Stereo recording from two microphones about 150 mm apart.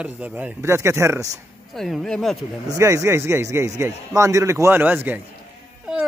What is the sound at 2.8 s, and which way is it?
Speech, 20° right (ahead or behind).